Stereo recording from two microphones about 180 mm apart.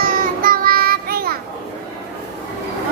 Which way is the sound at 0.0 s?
50° right (ahead or behind).